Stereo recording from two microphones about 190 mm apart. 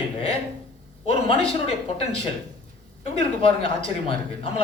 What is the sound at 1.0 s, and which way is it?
Speech, 30° left (ahead or behind).